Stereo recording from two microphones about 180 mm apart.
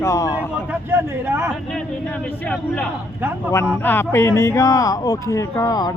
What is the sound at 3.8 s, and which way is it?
Speech, 10° left (ahead or behind).